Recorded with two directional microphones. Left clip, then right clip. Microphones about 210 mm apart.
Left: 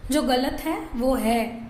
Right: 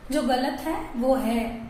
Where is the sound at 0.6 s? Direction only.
50° left (ahead or behind).